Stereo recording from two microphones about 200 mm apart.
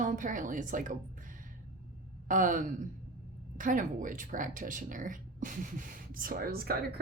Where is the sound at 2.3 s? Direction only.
40° right (ahead or behind).